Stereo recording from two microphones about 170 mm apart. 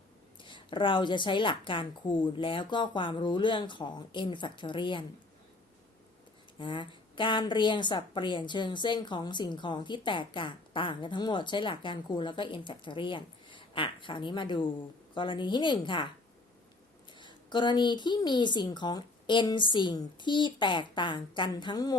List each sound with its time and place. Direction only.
0.4 s a woman's voice: 30° left (ahead or behind)
6.6 s a woman's voice: 30° left (ahead or behind)
17.2 s a woman's voice: 25° left (ahead or behind)